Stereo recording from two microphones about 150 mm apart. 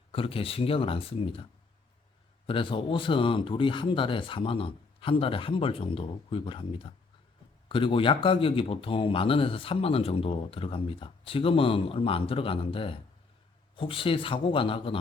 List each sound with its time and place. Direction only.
0.1 s speech: 40° left (ahead or behind)
2.5 s speech: 35° left (ahead or behind)